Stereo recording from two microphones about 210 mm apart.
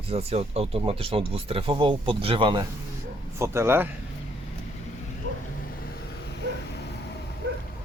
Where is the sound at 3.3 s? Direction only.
10° right (ahead or behind).